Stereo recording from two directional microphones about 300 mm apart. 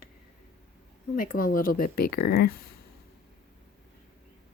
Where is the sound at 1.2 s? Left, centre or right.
Left.